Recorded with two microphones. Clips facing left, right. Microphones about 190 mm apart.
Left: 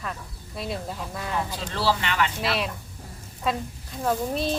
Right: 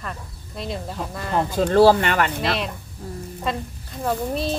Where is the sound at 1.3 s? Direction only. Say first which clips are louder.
Right 11 dB; 55° right (ahead or behind).